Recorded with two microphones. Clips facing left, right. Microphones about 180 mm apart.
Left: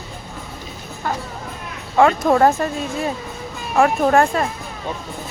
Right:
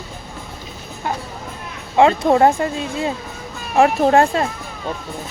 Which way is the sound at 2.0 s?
25° right (ahead or behind).